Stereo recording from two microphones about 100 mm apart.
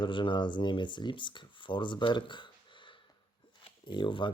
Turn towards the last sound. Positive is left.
turn(degrees=55)  # may be behind; listen again after turning